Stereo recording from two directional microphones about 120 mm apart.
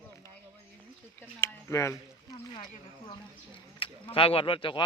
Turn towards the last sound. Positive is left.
turn(degrees=45)  # may be behind; listen again after turning